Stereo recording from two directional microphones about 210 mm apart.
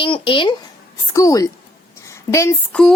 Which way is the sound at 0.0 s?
25° left (ahead or behind).